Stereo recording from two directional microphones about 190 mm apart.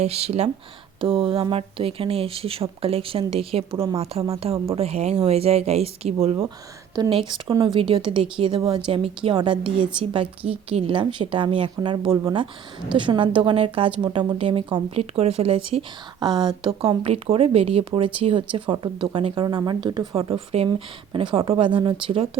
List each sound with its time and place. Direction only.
0.0 s speech: 35° right (ahead or behind)